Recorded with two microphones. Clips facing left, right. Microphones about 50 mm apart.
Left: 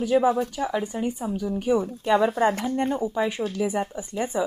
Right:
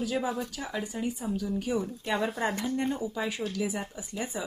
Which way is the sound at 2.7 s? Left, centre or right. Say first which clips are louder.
Left 6 dB; left.